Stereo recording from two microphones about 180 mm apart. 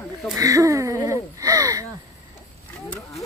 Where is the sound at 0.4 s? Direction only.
20° right (ahead or behind).